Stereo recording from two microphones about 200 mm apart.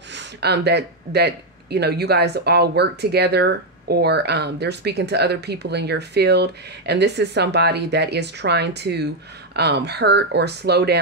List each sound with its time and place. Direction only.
0.1 s speech: 60° right (ahead or behind)